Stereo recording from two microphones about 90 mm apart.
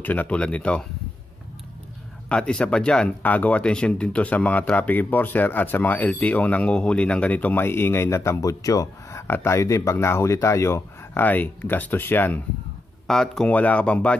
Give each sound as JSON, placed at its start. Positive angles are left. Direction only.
{"t": 0.0, "sound": "speech", "side_deg": 20}
{"t": 2.2, "sound": "speech", "side_deg": 10}
{"t": 9.3, "sound": "speech", "side_deg": 30}
{"t": 13.0, "sound": "speech", "side_deg": 5}